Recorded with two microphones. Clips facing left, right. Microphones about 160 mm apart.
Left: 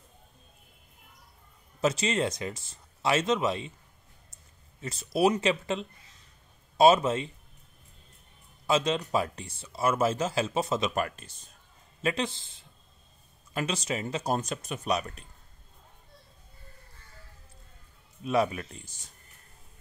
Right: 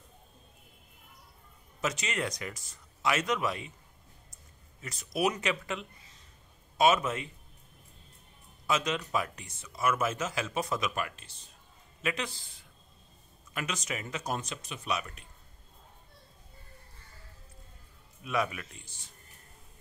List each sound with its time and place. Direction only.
1.8 s speech: 30° left (ahead or behind)
4.8 s speech: 30° left (ahead or behind)
8.6 s speech: 30° left (ahead or behind)
11.0 s speech: 45° left (ahead or behind)
12.0 s speech: 30° left (ahead or behind)
14.4 s speech: 45° left (ahead or behind)
18.2 s speech: 30° left (ahead or behind)